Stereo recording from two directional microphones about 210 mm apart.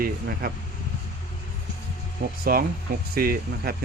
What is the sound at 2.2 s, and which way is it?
Speech, 45° right (ahead or behind).